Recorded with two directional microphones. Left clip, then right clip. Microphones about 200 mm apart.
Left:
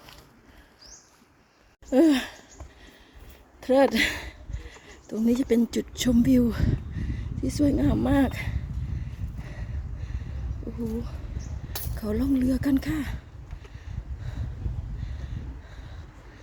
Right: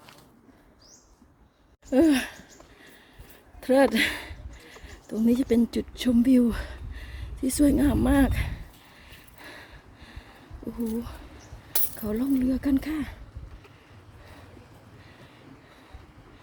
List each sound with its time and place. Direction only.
1.9 s sigh: centre (ahead or behind)
3.6 s speech: 5° right (ahead or behind)
9.4 s a sound: 10° right (ahead or behind)
11.9 s speech: centre (ahead or behind)